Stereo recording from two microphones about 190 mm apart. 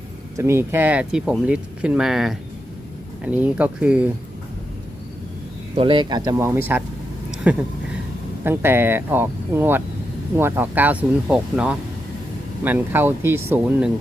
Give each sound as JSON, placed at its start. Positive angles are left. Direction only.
{"t": 0.3, "sound": "speech", "side_deg": -15}
{"t": 5.7, "sound": "speech", "side_deg": -25}